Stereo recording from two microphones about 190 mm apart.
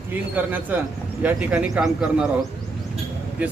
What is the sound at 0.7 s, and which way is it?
Speech, 10° right (ahead or behind).